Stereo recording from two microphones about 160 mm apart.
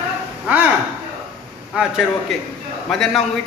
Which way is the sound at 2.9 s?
Centre (ahead or behind).